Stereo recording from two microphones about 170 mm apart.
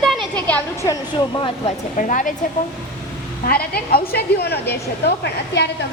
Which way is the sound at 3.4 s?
65° left (ahead or behind).